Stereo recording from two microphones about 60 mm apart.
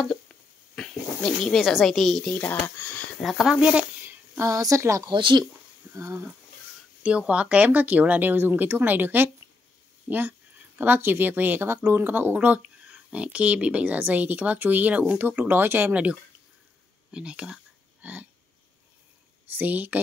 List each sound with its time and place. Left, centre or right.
0.7 s snake: centre
1.6 s a woman's voice: centre
2.2 s speech: left
3.2 s speech: centre
3.4 s speech: centre
4.5 s speech: right
7.0 s speech: right
15.9 s speech: right
18.0 s burping: right
19.5 s speech: right